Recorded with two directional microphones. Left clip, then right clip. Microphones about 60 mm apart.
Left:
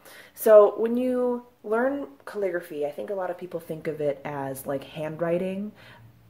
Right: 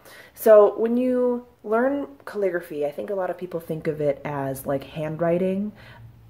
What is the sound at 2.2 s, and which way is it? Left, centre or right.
Speech, right.